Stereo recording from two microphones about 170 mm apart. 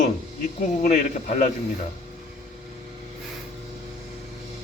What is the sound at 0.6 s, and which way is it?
Speech, 50° left (ahead or behind).